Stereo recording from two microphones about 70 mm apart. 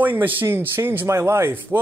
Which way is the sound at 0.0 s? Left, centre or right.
Right.